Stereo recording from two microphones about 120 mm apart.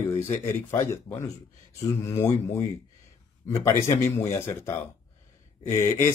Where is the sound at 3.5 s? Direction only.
25° left (ahead or behind).